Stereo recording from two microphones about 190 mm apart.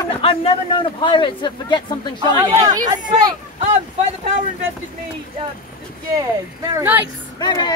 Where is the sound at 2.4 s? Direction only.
20° right (ahead or behind).